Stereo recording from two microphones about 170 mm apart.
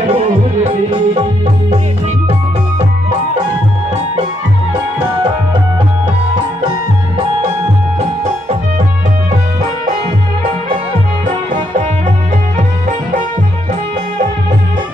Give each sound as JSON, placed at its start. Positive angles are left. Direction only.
{"t": 0.0, "sound": "music", "side_deg": -35}
{"t": 8.0, "sound": "music", "side_deg": -40}